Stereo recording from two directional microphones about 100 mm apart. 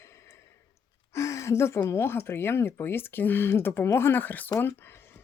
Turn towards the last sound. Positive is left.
turn(degrees=25)  # may be behind; listen again after turning